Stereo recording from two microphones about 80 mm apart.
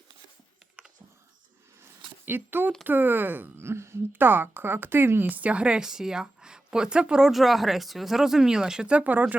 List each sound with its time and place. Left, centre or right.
2.2 s speech: right
5.4 s a woman's voice: centre